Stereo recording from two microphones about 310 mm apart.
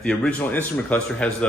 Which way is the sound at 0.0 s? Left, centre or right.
Centre.